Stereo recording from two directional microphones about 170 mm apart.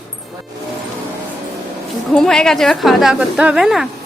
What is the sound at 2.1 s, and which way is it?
A woman's voice, 5° left (ahead or behind).